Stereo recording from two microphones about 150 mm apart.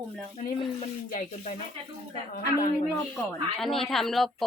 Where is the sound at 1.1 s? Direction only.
55° left (ahead or behind).